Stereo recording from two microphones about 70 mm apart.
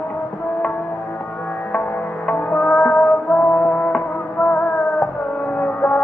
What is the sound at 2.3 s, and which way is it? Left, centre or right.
Music, centre.